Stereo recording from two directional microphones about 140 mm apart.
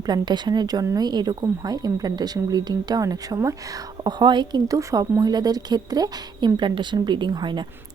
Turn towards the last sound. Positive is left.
turn(degrees=-30)  # may be behind; listen again after turning